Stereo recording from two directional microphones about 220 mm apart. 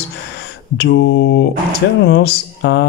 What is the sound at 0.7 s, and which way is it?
Speech, 50° left (ahead or behind).